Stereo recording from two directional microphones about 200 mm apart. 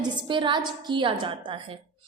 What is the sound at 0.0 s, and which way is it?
A woman's voice, 25° right (ahead or behind).